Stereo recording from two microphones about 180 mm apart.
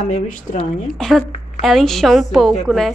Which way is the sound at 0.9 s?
Centre (ahead or behind).